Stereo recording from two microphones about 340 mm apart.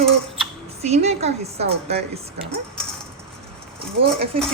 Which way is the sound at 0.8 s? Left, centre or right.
Centre.